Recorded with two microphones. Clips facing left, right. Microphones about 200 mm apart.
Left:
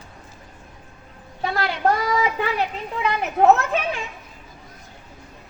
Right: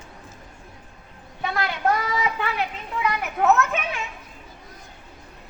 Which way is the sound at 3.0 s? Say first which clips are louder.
Left 4 dB; 25° left (ahead or behind).